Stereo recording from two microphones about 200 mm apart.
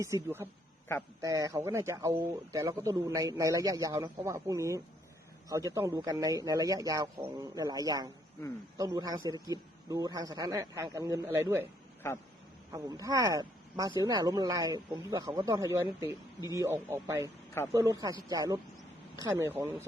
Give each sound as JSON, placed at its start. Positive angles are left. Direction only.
{"t": 0.0, "sound": "speech", "side_deg": -15}
{"t": 12.7, "sound": "speech", "side_deg": -20}
{"t": 17.2, "sound": "speech", "side_deg": 10}
{"t": 17.7, "sound": "speech", "side_deg": -15}